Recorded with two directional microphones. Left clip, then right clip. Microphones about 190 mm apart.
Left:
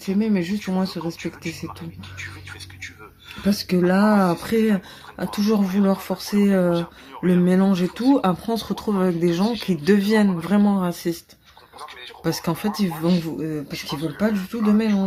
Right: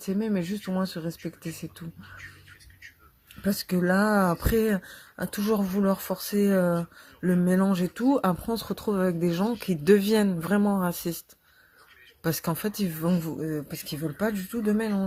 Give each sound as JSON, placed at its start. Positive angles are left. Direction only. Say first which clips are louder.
{"t": 0.2, "sound": "speech", "louder": "left 8 dB", "side_deg": -40}
{"t": 3.5, "sound": "speech", "louder": "left 5 dB", "side_deg": -50}
{"t": 8.4, "sound": "speech", "louder": "left 4 dB", "side_deg": -30}
{"t": 10.6, "sound": "speech", "louder": "left 6 dB", "side_deg": -30}
{"t": 10.8, "sound": "speech", "louder": "left 5 dB", "side_deg": -40}
{"t": 12.2, "sound": "speech", "louder": "left 5 dB", "side_deg": -40}